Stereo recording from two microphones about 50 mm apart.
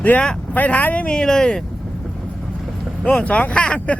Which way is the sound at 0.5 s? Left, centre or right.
Left.